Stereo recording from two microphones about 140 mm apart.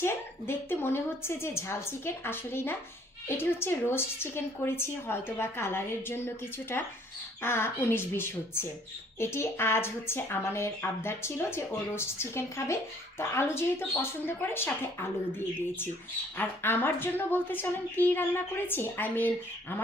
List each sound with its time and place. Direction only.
0.0 s a woman's voice: 15° left (ahead or behind)
16.4 s a woman's voice: 15° left (ahead or behind)